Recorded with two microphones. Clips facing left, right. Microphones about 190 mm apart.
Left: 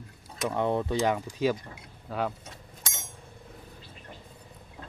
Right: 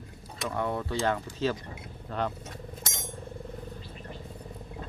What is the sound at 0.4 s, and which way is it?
Speech, 20° left (ahead or behind).